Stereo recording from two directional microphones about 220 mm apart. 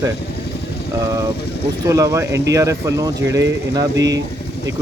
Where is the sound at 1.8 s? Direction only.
15° right (ahead or behind).